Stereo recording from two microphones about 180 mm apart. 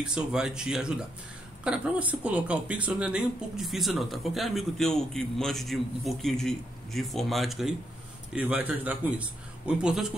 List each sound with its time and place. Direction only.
0.0 s a man's voice: 5° right (ahead or behind)